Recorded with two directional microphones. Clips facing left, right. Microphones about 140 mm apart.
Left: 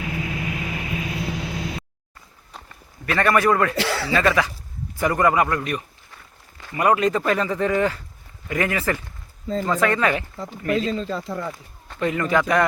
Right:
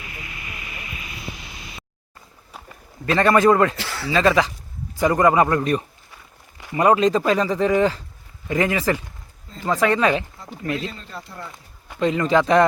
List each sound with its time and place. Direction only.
0.0 s vehicle: 90° left
3.1 s speech: 25° right (ahead or behind)
3.8 s speech: 85° left
4.1 s speech: 20° right (ahead or behind)
11.9 s speech: 20° right (ahead or behind)